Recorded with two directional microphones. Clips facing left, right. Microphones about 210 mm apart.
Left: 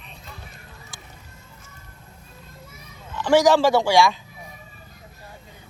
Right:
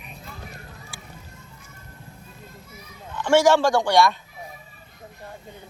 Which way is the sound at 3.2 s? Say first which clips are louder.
Left 1 dB; centre (ahead or behind).